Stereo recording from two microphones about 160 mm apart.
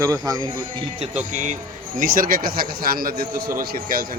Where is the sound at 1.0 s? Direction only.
45° right (ahead or behind).